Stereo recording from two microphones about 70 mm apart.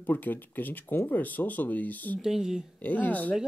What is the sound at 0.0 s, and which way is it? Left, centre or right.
Speech, left.